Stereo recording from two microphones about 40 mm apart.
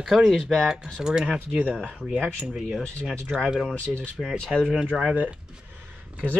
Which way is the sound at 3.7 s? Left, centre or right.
Left.